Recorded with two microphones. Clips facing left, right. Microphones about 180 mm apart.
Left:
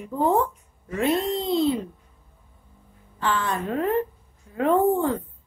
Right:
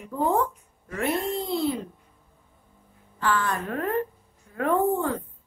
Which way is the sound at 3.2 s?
20° left (ahead or behind).